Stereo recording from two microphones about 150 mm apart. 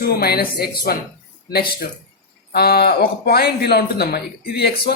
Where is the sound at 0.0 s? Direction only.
90° left.